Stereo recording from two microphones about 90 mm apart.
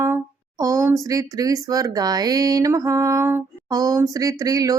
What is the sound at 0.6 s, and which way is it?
Speech, 40° right (ahead or behind).